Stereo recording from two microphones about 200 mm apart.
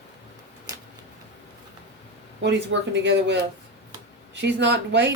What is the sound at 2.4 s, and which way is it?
Speech, 60° right (ahead or behind).